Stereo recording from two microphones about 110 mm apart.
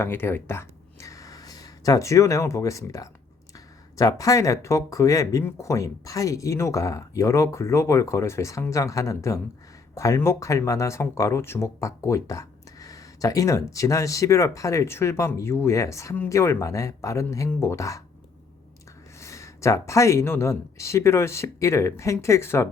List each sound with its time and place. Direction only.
0.0 s speech: 20° left (ahead or behind)
1.0 s a sound: 30° left (ahead or behind)
3.9 s speech: 30° left (ahead or behind)
19.2 s speech: 25° left (ahead or behind)